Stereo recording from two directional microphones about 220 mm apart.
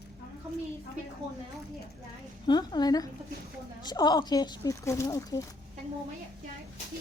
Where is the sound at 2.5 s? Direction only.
20° left (ahead or behind).